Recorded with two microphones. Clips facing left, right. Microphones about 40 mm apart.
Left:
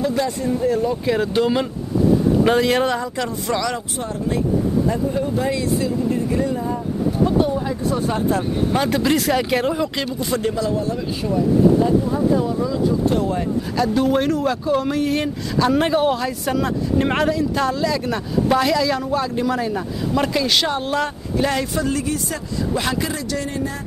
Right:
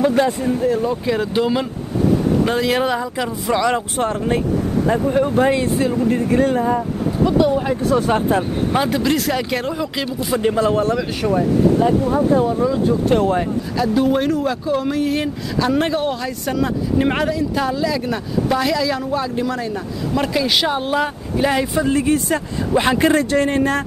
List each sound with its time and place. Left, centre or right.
0.0 s speech: right
0.7 s speech: centre
3.9 s speech: right
7.5 s speech: right
8.1 s speech: right
8.5 s speech: centre
8.9 s speech: centre
10.0 s speech: centre
10.5 s speech: right
12.8 s speech: right
13.7 s speech: centre; by 22.9 s right
22.9 s speech: right